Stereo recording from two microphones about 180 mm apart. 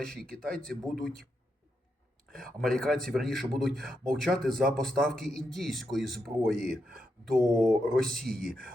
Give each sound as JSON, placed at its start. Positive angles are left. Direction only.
{"t": 0.0, "sound": "a man's voice", "side_deg": 5}
{"t": 2.3, "sound": "a man's voice", "side_deg": 0}
{"t": 6.7, "sound": "speech", "side_deg": -55}
{"t": 7.3, "sound": "a man's voice", "side_deg": 0}
{"t": 8.4, "sound": "speech", "side_deg": -55}